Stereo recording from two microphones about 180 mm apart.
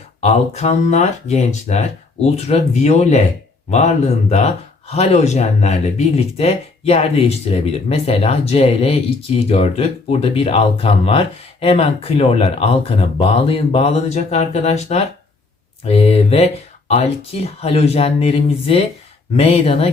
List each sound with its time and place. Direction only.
0.2 s speech: 35° left (ahead or behind)
4.3 s speech: 35° left (ahead or behind)